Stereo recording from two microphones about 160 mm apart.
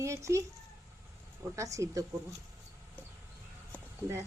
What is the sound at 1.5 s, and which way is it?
Speech, 20° right (ahead or behind).